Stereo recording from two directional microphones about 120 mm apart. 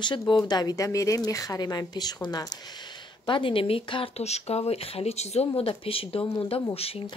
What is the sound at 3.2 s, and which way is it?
Speech, 45° left (ahead or behind).